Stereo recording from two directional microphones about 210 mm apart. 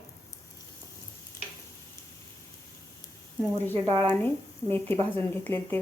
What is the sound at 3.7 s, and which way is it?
Speech, 25° right (ahead or behind).